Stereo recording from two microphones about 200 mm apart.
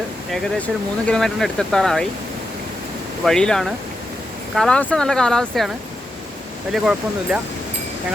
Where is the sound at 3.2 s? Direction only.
5° left (ahead or behind).